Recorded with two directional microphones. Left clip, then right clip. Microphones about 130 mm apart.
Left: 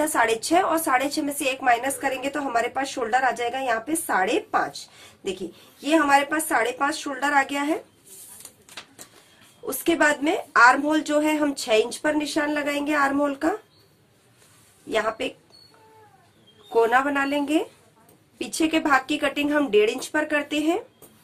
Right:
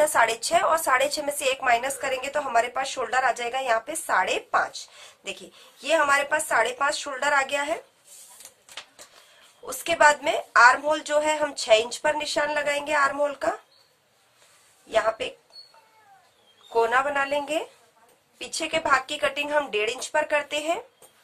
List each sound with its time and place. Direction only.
0.0 s a woman's voice: 25° right (ahead or behind)
9.7 s a woman's voice: 5° right (ahead or behind)
14.9 s a woman's voice: 5° right (ahead or behind)
16.7 s a woman's voice: 5° right (ahead or behind)